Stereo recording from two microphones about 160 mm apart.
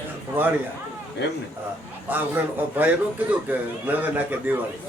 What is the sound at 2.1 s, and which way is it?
A man's voice, 10° right (ahead or behind).